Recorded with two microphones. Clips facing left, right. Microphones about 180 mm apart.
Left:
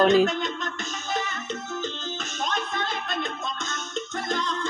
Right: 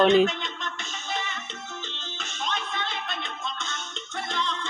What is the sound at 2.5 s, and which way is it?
Music, 45° left (ahead or behind).